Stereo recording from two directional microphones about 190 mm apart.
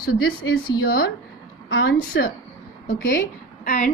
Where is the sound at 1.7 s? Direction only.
90° left.